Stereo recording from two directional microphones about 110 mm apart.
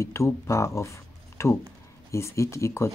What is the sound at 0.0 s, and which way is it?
Speech, 25° left (ahead or behind).